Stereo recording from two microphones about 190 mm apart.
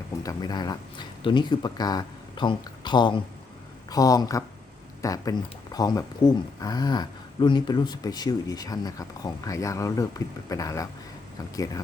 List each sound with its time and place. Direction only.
0.2 s speech: 20° left (ahead or behind)